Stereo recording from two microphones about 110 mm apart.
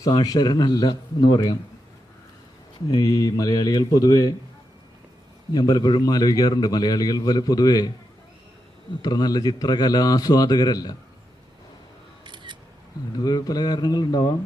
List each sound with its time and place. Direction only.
0.0 s a man's voice: 35° left (ahead or behind)
2.9 s a man's voice: 35° left (ahead or behind)
5.5 s a man's voice: 40° left (ahead or behind)
9.0 s a man's voice: 40° left (ahead or behind)
12.2 s camera: 45° right (ahead or behind)
13.1 s a man's voice: 35° left (ahead or behind)